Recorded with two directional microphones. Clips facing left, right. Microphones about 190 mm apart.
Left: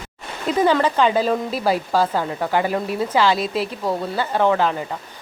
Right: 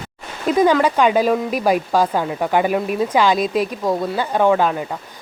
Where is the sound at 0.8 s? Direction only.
15° right (ahead or behind).